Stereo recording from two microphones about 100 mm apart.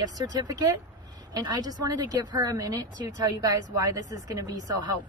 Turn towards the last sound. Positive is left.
turn(degrees=-40)  # may be behind; listen again after turning